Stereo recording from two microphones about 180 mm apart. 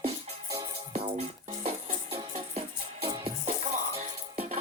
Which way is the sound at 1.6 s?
35° right (ahead or behind).